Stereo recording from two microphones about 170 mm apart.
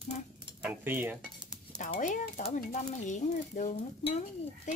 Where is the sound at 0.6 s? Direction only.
10° right (ahead or behind).